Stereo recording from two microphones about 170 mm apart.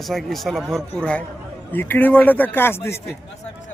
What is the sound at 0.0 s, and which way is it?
A man's voice, centre (ahead or behind).